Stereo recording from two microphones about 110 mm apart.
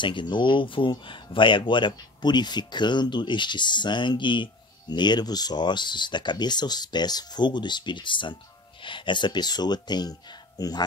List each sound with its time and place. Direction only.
0.0 s speech: 45° left (ahead or behind)